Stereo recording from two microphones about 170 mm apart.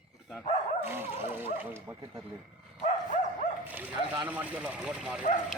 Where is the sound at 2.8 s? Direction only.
45° left (ahead or behind).